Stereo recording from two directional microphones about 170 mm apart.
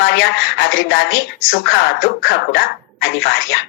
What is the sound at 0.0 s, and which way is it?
A woman's voice, 90° left.